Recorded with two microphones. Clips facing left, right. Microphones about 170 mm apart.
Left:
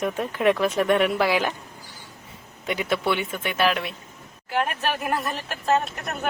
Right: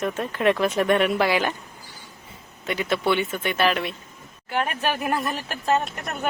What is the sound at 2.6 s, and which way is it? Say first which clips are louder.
Speech: right 1 dB; 10° left (ahead or behind).